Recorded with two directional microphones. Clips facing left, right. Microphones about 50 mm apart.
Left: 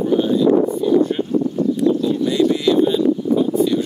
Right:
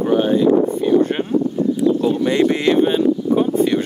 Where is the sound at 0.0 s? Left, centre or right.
Right.